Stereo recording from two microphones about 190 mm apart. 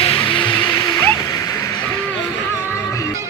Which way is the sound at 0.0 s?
30° left (ahead or behind).